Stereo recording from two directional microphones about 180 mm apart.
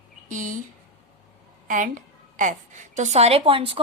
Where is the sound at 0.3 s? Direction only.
45° right (ahead or behind).